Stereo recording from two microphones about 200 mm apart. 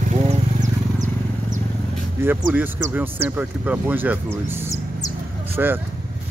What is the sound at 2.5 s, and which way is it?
Speech, 10° right (ahead or behind).